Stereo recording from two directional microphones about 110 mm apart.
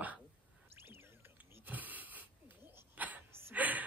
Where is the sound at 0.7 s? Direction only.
20° right (ahead or behind).